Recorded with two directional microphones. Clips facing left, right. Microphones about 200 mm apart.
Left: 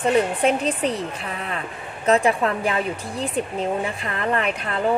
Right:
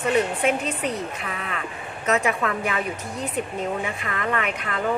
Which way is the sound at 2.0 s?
30° left (ahead or behind).